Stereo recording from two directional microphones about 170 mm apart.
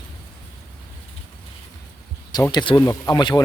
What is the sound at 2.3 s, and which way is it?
Speech, 25° left (ahead or behind).